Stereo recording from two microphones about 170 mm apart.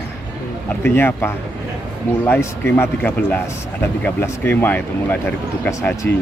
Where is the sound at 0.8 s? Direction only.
15° left (ahead or behind).